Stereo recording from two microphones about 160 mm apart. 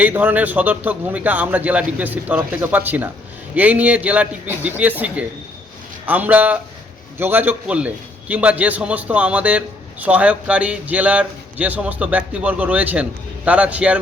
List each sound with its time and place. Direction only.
0.0 s a man's voice: 10° right (ahead or behind)